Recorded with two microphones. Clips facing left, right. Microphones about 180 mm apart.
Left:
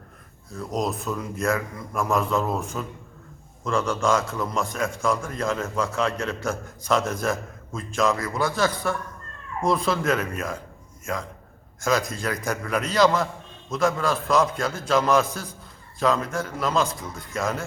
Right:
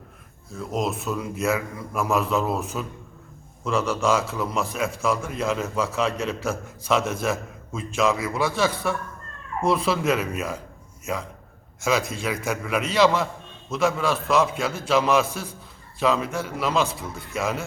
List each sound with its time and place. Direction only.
0.5 s a man's voice: centre (ahead or behind)